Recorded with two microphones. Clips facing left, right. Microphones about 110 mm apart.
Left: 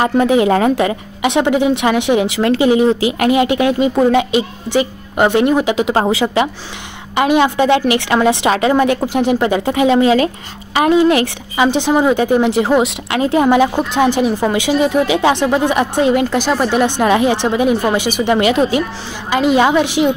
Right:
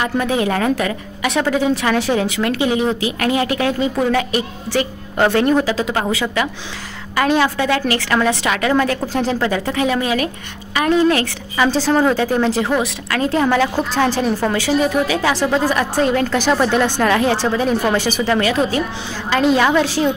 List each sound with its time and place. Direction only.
0.0 s a woman's voice: 25° left (ahead or behind)
5.9 s a woman's voice: 30° left (ahead or behind)